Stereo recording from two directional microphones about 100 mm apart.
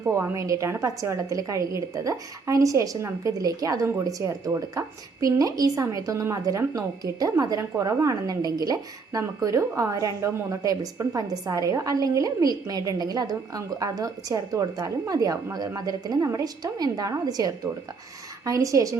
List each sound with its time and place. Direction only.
0.0 s a woman's voice: 25° right (ahead or behind)